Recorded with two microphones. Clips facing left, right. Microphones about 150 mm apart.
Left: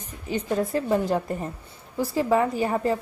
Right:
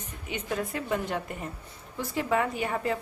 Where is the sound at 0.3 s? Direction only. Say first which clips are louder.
Left 7 dB; 35° left (ahead or behind).